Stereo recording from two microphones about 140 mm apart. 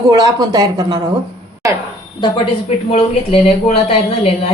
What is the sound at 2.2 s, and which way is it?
Speech, 35° left (ahead or behind).